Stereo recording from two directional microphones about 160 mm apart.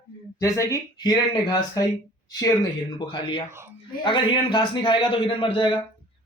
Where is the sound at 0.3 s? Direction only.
20° left (ahead or behind).